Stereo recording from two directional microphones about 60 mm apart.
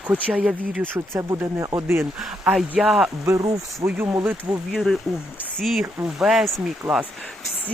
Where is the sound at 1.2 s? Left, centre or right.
Right.